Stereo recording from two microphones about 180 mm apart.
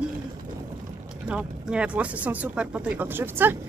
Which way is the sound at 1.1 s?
5° right (ahead or behind).